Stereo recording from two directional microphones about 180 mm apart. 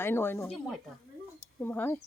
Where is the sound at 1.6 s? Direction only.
10° left (ahead or behind).